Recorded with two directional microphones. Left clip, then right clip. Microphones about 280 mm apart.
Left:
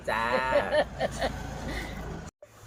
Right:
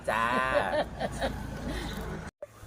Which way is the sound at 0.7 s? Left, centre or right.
Left.